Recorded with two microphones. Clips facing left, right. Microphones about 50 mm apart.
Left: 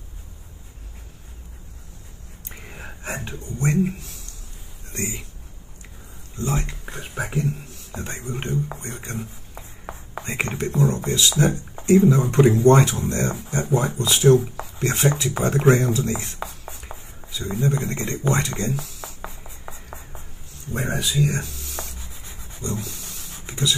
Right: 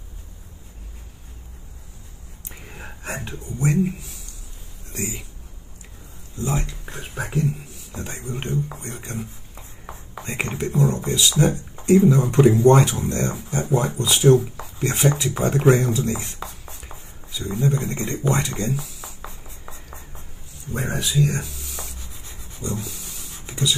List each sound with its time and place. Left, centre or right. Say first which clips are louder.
2.5 s whispering: even; centre
3.6 s speech: right 1 dB; centre
6.9 s speech: left 1 dB; centre
16.4 s writing: left 1 dB; centre
17.3 s speech: right 1 dB; centre
19.2 s writing: left 2 dB; centre
20.7 s writing: even; centre
22.2 s rub: left 1 dB; left
22.6 s a sound: even; centre